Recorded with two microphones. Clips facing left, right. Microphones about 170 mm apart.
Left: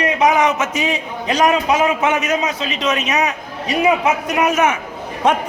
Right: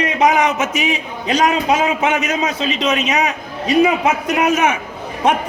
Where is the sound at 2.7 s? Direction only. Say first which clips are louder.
Right 2 dB; 20° right (ahead or behind).